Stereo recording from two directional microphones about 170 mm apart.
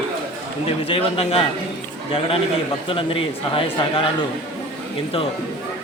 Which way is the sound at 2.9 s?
30° left (ahead or behind).